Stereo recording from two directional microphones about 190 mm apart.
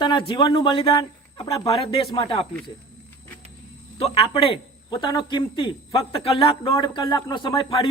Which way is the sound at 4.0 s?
30° left (ahead or behind).